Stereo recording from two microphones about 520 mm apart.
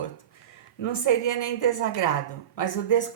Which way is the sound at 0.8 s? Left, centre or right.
Left.